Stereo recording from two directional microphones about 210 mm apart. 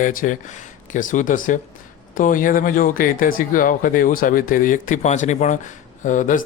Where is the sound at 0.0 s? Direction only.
40° left (ahead or behind).